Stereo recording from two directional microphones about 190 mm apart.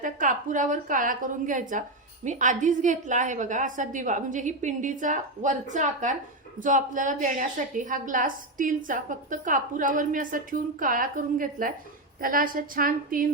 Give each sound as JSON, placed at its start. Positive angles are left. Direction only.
{"t": 0.0, "sound": "a woman's voice", "side_deg": -45}